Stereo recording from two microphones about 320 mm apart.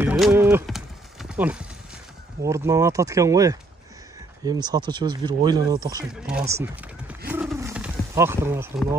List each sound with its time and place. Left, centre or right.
0.0 s horse: centre
1.3 s speech: centre
6.5 s wild animals: centre